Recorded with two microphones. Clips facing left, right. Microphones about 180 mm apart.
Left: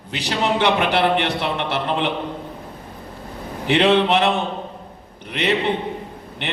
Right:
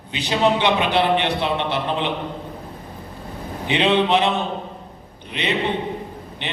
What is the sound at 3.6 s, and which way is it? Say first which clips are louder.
Speech: left 2 dB; 65° left (ahead or behind).